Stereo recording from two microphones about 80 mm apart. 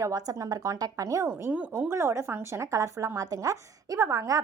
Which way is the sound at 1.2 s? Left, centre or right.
Right.